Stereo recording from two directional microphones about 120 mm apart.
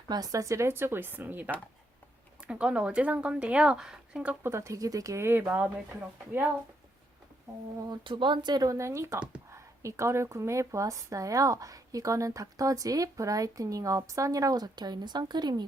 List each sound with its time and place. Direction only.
0.1 s a woman's voice: 30° right (ahead or behind); by 4.4 s 10° right (ahead or behind)
4.4 s a woman's voice: 25° right (ahead or behind)
7.9 s speech: 40° right (ahead or behind); by 9.1 s 25° right (ahead or behind)
9.1 s speech: 10° right (ahead or behind)
9.5 s a woman's voice: 25° right (ahead or behind)